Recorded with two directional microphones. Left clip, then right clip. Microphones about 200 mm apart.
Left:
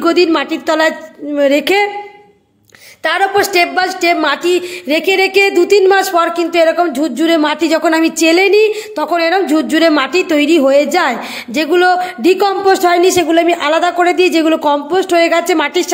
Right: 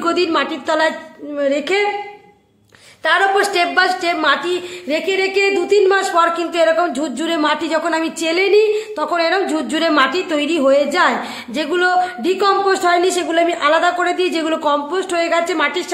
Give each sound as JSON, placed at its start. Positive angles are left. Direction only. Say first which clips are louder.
{"t": 0.0, "sound": "a woman's voice", "louder": "left 5 dB", "side_deg": 25}
{"t": 3.0, "sound": "a woman's voice", "louder": "left 2 dB", "side_deg": 25}